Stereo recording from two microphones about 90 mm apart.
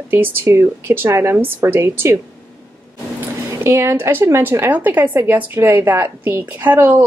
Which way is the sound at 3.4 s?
30° right (ahead or behind).